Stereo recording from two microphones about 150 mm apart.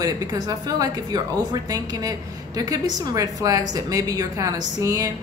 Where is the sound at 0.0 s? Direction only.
25° right (ahead or behind).